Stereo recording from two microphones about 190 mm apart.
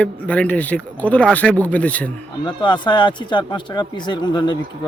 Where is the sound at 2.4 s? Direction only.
25° left (ahead or behind).